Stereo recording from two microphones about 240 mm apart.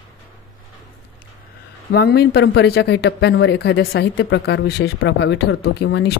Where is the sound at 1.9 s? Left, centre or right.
Left.